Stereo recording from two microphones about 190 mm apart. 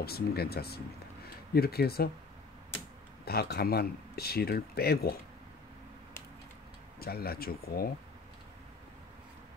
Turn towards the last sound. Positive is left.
turn(degrees=55)  # may be behind; listen again after turning